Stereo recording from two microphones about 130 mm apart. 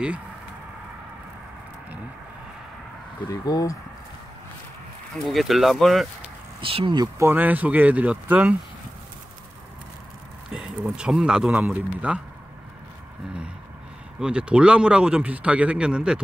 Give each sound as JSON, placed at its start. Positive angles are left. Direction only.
{"t": 3.3, "sound": "speech", "side_deg": 30}
{"t": 5.2, "sound": "speech", "side_deg": 0}
{"t": 6.6, "sound": "speech", "side_deg": -40}
{"t": 7.2, "sound": "a man's voice", "side_deg": -15}
{"t": 10.5, "sound": "a man's voice", "side_deg": -5}
{"t": 14.2, "sound": "a man's voice", "side_deg": -10}